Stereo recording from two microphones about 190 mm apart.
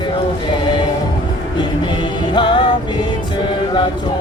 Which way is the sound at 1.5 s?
25° left (ahead or behind).